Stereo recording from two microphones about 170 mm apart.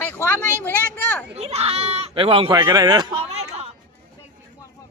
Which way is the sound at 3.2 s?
40° right (ahead or behind).